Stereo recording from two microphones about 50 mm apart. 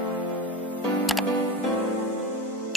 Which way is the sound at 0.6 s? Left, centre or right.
Left.